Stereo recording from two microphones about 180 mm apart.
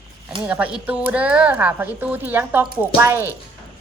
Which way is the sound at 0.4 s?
10° right (ahead or behind).